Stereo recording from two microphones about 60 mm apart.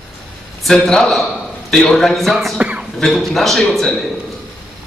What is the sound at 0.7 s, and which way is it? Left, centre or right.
A man's voice, centre.